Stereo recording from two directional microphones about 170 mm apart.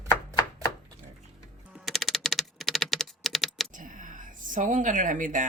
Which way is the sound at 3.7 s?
50° right (ahead or behind).